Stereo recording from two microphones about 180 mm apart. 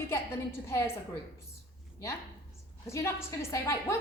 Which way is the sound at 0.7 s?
15° left (ahead or behind).